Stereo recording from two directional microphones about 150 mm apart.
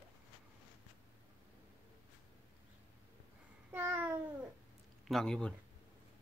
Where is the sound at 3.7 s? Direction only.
10° right (ahead or behind).